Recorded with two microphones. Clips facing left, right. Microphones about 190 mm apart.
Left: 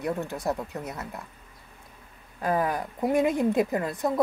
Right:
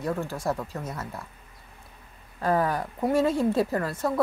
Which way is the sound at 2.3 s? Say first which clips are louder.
Right 1 dB; 15° left (ahead or behind).